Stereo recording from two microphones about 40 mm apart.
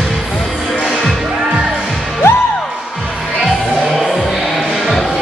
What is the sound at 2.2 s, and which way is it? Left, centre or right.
Music, left.